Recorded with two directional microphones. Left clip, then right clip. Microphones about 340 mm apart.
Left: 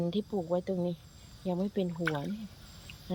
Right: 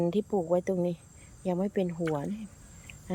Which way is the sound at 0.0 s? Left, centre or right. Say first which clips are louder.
Right 5 dB; centre.